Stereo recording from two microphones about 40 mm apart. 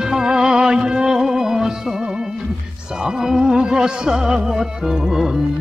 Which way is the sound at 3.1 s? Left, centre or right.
Centre.